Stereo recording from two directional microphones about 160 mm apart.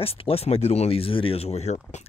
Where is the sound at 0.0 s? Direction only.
35° left (ahead or behind).